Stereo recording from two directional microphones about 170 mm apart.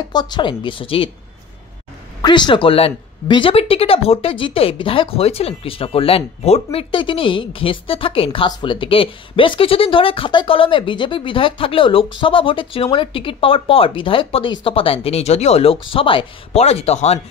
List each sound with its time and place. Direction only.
0.1 s a woman's voice: 25° left (ahead or behind)
2.2 s speech: 25° left (ahead or behind)